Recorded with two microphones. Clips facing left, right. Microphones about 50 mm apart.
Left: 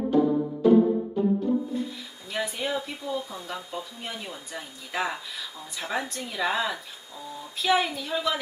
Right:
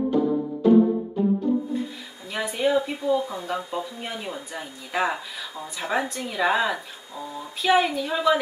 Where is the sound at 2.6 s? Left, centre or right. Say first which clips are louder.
Right 8 dB; centre.